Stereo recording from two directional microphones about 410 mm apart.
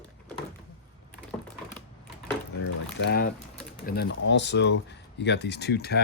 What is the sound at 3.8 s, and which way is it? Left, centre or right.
Speech, left.